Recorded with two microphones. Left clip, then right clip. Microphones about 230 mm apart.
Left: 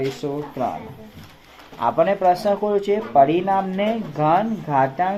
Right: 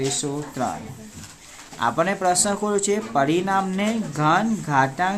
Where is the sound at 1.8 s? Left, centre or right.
Right.